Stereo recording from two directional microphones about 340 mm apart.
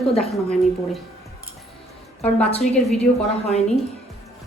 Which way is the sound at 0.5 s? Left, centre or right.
Centre.